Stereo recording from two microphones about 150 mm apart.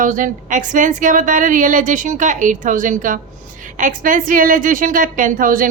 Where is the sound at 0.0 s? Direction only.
60° right (ahead or behind).